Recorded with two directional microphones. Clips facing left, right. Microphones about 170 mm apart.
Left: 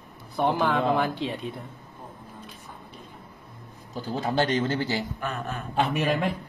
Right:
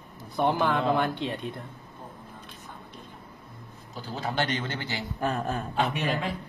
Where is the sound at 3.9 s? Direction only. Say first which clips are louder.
Left 5 dB; 40° left (ahead or behind).